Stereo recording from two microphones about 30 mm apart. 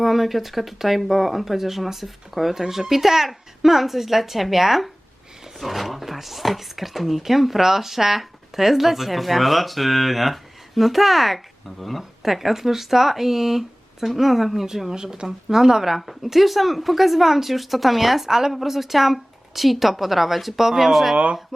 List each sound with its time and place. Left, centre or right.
0.0 s speech: centre
14.7 s speech: centre
16.0 s speech: centre
18.3 s speech: centre